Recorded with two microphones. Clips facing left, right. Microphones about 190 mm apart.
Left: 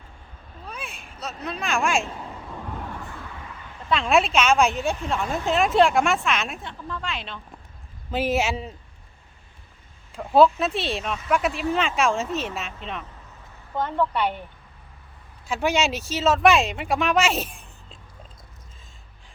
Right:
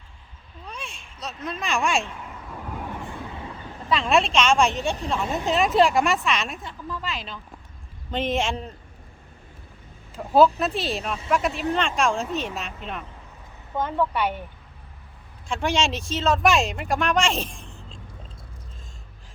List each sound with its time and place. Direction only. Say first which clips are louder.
0.7 s vehicle: left 1 dB; 5° left (ahead or behind)
0.9 s vehicle: left 4 dB; 60° left (ahead or behind)
1.5 s speech: even; centre (ahead or behind)
2.0 s speech: left 3 dB; 35° left (ahead or behind)
3.1 s vehicle: right 4 dB; 20° right (ahead or behind)
3.8 s speech: left 1 dB; centre (ahead or behind)
10.2 s speech: even; centre (ahead or behind)
15.4 s speech: left 1 dB; 5° left (ahead or behind)